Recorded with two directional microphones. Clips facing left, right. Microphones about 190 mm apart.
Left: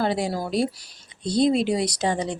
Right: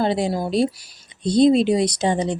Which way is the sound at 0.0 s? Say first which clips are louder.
Right 3 dB; 25° right (ahead or behind).